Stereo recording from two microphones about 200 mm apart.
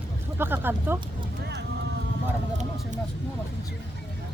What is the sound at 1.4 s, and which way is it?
Vehicle, 55° right (ahead or behind).